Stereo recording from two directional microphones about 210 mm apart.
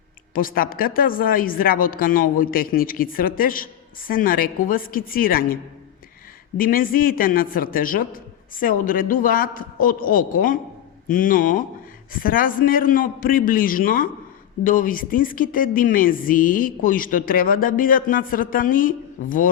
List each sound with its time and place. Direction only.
0.3 s a woman's voice: 40° left (ahead or behind)
6.6 s speech: 40° left (ahead or behind)